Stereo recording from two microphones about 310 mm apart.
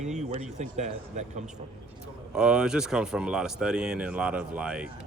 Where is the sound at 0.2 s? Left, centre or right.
Right.